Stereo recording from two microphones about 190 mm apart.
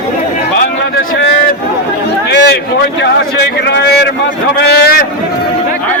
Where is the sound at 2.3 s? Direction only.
65° left (ahead or behind).